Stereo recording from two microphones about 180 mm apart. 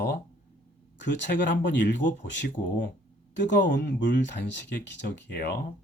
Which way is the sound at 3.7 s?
80° left.